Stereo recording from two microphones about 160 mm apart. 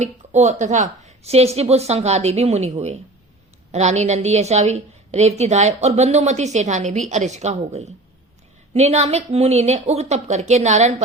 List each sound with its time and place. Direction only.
0.0 s a woman's voice: 45° right (ahead or behind)